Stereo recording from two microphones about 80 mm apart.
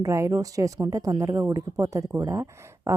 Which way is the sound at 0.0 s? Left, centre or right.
Right.